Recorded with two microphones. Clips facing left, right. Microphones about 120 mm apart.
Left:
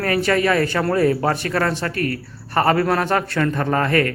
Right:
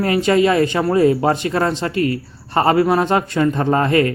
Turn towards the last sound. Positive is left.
turn(degrees=-20)  # may be behind; listen again after turning